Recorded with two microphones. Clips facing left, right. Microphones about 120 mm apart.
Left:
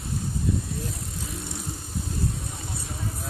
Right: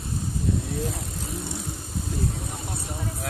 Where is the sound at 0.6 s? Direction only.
70° right (ahead or behind).